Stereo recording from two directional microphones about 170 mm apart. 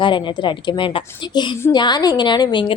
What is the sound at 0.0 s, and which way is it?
A woman's voice, 30° left (ahead or behind).